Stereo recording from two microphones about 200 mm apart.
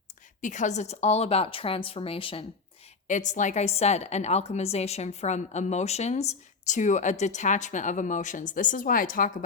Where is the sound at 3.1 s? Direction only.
40° left (ahead or behind).